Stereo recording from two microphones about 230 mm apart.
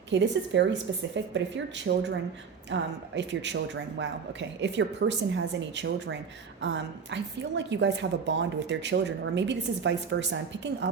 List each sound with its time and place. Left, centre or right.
0.1 s a woman's voice: right